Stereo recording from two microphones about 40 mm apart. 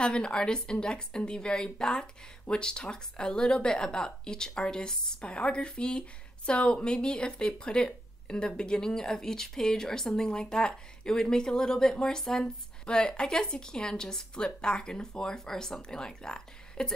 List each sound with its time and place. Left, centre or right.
0.0 s a woman's voice: left